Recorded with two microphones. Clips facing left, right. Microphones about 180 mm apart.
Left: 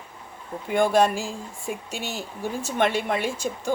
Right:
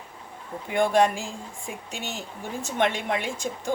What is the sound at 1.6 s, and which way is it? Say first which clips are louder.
Speech: left 6 dB; 15° right (ahead or behind).